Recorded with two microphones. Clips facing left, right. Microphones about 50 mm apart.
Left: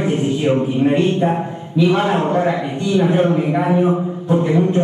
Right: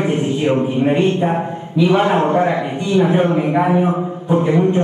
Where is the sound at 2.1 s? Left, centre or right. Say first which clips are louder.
Right 2 dB; right.